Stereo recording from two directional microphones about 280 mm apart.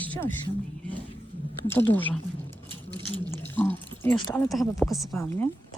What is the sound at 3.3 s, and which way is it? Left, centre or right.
Speech, centre.